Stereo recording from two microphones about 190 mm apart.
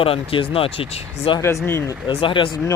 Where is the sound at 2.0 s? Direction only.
25° left (ahead or behind).